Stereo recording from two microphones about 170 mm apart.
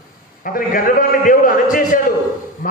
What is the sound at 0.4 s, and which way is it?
A man's voice, 55° left (ahead or behind).